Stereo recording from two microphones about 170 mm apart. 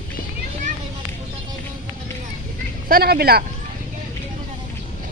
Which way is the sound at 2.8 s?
65° right (ahead or behind).